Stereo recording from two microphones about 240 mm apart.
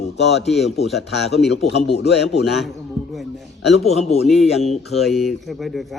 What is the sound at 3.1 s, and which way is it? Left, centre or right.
Speech, centre.